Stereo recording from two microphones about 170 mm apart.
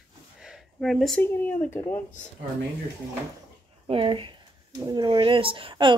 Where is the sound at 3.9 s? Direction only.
30° right (ahead or behind).